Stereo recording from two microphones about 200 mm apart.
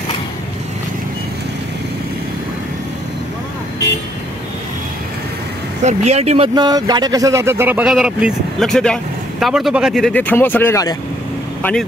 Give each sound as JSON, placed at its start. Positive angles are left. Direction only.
{"t": 5.9, "sound": "speech", "side_deg": -35}